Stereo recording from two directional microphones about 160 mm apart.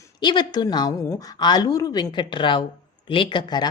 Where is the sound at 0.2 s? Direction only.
25° left (ahead or behind).